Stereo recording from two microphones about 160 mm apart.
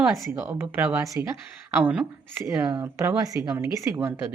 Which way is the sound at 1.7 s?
10° right (ahead or behind).